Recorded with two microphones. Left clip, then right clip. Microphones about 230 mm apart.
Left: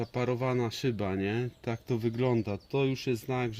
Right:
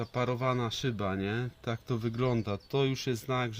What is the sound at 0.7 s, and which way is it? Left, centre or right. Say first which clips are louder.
Speech: left 2 dB; right.